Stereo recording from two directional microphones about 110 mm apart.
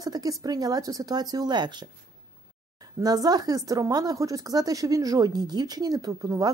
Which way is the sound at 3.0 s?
35° right (ahead or behind).